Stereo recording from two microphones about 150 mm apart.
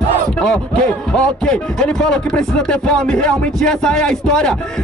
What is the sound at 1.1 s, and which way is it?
Speech, 5° left (ahead or behind).